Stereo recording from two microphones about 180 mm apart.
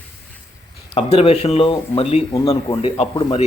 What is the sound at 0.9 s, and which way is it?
A man's voice, 35° left (ahead or behind).